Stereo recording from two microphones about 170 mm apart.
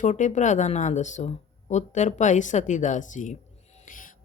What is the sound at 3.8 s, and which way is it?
Music, 50° left (ahead or behind).